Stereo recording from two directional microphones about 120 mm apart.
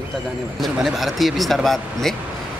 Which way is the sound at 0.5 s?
Centre (ahead or behind).